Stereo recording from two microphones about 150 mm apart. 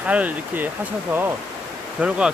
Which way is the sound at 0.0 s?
10° right (ahead or behind).